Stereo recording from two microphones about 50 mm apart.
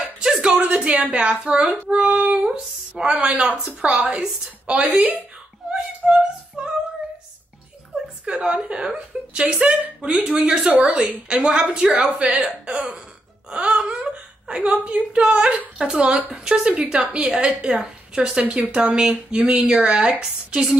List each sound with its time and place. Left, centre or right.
0.0 s a sound: centre
1.9 s speech: right
5.7 s music: centre
8.3 s a woman's voice: right
12.6 s throat clearing: right
13.5 s wail: centre
14.0 s a sound: right
15.1 s a woman's voice: centre